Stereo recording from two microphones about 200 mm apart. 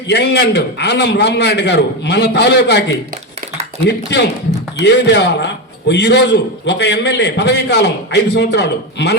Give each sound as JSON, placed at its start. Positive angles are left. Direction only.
{"t": 0.1, "sound": "a man's voice", "side_deg": 55}